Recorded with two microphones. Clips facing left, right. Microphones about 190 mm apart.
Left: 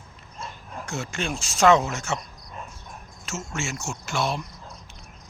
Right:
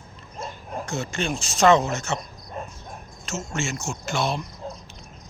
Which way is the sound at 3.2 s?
10° left (ahead or behind).